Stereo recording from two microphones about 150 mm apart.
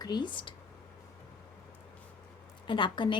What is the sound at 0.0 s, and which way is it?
Speech, 30° left (ahead or behind).